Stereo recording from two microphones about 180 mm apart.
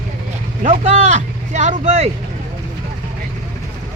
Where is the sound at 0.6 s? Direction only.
40° right (ahead or behind).